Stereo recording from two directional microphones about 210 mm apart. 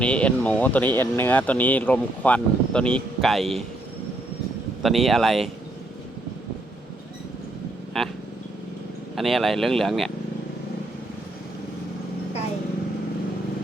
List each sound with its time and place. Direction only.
0.0 s speech: 5° left (ahead or behind)
4.8 s speech: centre (ahead or behind)
7.9 s speech: centre (ahead or behind)
9.1 s speech: centre (ahead or behind)